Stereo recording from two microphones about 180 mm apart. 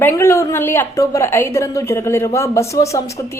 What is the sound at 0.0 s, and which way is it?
A woman's voice, 15° left (ahead or behind).